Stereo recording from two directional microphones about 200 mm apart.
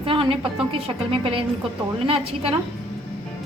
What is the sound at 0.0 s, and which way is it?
A woman's voice, 25° right (ahead or behind).